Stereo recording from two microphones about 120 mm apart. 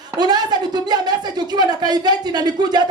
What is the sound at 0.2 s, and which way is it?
Speech, 35° right (ahead or behind).